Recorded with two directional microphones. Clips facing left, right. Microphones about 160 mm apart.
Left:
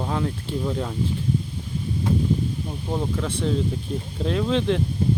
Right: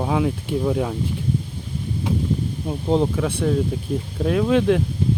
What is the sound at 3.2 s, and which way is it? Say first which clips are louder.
Speech: right 4 dB; 10° right (ahead or behind).